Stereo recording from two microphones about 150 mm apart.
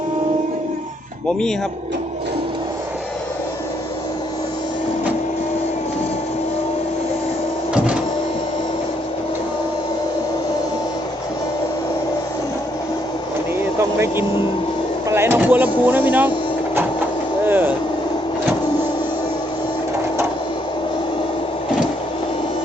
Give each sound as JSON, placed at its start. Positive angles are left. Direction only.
{"t": 13.7, "sound": "vehicle", "side_deg": -15}
{"t": 15.1, "sound": "a sound", "side_deg": -15}
{"t": 17.4, "sound": "vehicle", "side_deg": -15}